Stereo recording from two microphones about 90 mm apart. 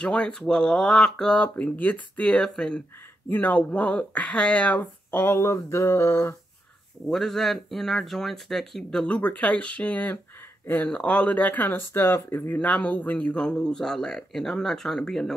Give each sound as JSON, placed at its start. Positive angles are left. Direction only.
{"t": 0.0, "sound": "speech", "side_deg": 10}
{"t": 3.3, "sound": "speech", "side_deg": 20}
{"t": 7.1, "sound": "speech", "side_deg": 5}
{"t": 9.0, "sound": "speech", "side_deg": 15}
{"t": 12.5, "sound": "speech", "side_deg": 15}